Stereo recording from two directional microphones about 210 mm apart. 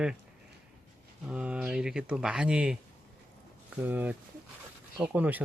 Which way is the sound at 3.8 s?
10° right (ahead or behind).